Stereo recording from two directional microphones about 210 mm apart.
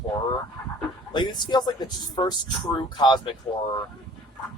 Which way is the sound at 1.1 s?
20° left (ahead or behind).